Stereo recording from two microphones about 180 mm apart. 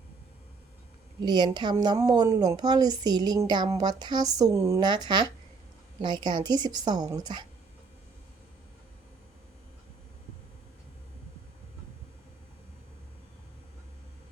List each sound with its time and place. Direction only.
1.2 s speech: 25° right (ahead or behind)